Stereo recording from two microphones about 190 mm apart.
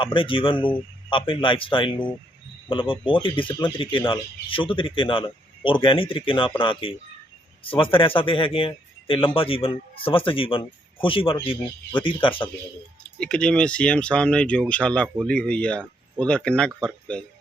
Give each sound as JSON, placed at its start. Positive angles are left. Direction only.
{"t": 0.0, "sound": "a man's voice", "side_deg": 25}
{"t": 13.0, "sound": "speech", "side_deg": 5}